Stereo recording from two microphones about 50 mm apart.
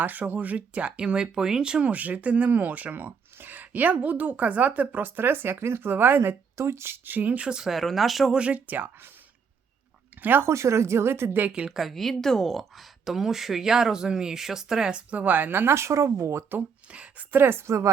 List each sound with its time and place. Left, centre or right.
0.0 s speech: right
5.5 s speech: right
7.0 s speech: right
7.4 s speech: centre
7.7 s speech: centre
8.3 s speech: right
10.2 s speech: right
10.4 s speech: right
11.3 s speech: right
11.7 s speech: centre
15.1 s speech: right
15.7 s speech: right
16.9 s a woman's voice: right
17.3 s speech: right